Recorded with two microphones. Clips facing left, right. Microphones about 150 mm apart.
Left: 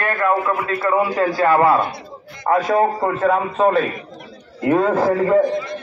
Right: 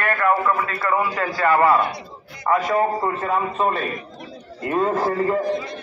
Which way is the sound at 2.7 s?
70° left (ahead or behind).